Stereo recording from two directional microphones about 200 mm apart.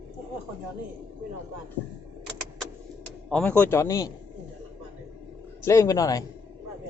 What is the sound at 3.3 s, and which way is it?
Speech, 5° left (ahead or behind).